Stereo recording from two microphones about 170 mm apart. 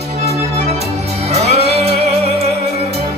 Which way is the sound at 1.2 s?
35° right (ahead or behind).